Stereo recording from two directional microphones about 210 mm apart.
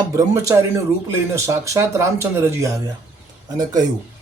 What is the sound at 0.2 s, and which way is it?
Speech, 15° right (ahead or behind).